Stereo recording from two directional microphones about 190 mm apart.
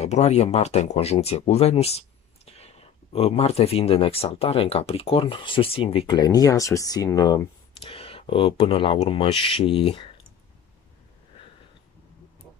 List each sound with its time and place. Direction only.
0.0 s speech: 35° left (ahead or behind); by 7.4 s 20° left (ahead or behind)
7.9 s speech: 30° left (ahead or behind)